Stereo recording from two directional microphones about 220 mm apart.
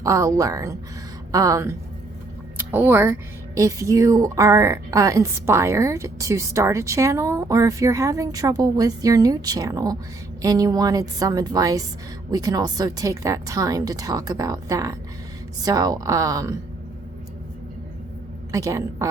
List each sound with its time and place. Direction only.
0.0 s speech: 15° right (ahead or behind)
18.5 s speech: 15° right (ahead or behind)